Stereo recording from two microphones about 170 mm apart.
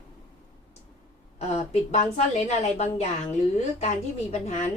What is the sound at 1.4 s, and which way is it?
A woman's voice, 40° left (ahead or behind).